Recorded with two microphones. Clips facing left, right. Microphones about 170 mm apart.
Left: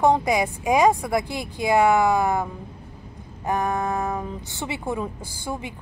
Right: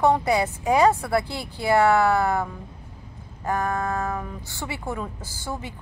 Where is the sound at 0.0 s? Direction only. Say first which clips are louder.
Left 1 dB; 15° left (ahead or behind).